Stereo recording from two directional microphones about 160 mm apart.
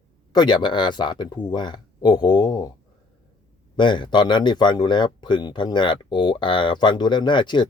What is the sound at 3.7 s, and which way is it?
Speech, 30° left (ahead or behind).